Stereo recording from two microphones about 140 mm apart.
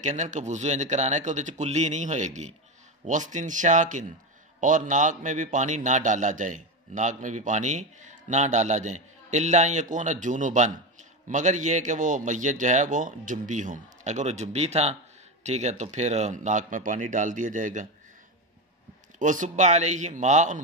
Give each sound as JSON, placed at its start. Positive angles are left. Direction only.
{"t": 0.0, "sound": "a man's voice", "side_deg": -60}
{"t": 19.1, "sound": "a man's voice", "side_deg": -65}